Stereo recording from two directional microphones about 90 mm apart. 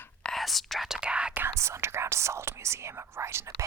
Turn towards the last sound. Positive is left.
turn(degrees=-30)  # may be behind; listen again after turning